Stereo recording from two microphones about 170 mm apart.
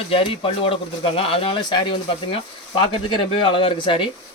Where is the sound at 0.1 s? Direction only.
35° left (ahead or behind).